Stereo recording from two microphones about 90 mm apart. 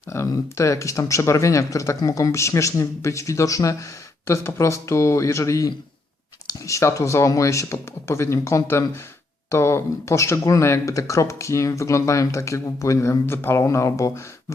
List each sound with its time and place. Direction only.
0.1 s speech: 30° left (ahead or behind)